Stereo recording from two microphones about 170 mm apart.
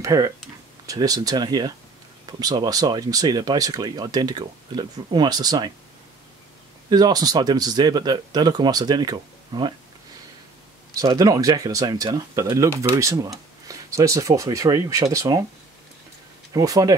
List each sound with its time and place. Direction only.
0.0 s speech: 20° right (ahead or behind)
6.9 s speech: 25° right (ahead or behind)
11.0 s speech: 20° right (ahead or behind)
16.5 s speech: 20° right (ahead or behind)